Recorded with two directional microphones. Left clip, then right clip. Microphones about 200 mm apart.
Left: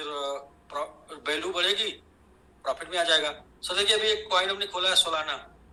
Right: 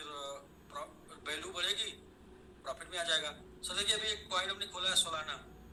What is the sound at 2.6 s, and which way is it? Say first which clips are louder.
A man's voice: left 11 dB; 55° left (ahead or behind).